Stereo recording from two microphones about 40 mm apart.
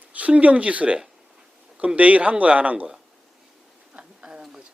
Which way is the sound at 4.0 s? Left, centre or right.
Right.